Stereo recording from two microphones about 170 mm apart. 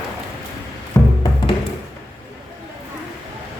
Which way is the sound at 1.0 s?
20° left (ahead or behind).